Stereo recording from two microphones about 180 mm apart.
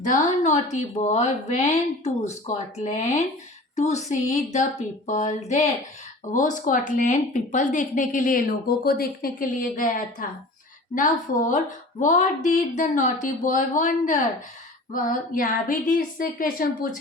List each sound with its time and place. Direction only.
0.0 s a woman's voice: 45° left (ahead or behind)